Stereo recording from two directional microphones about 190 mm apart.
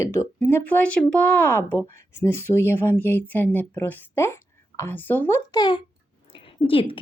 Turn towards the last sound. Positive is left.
turn(degrees=25)  # may be behind; listen again after turning